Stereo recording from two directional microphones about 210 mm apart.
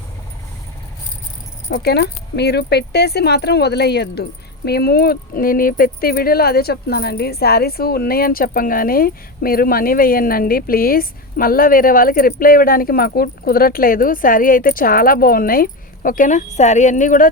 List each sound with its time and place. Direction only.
1.7 s speech: 50° left (ahead or behind)